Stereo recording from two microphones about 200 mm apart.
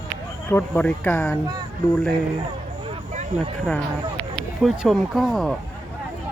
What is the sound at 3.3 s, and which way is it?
Speech, 35° right (ahead or behind).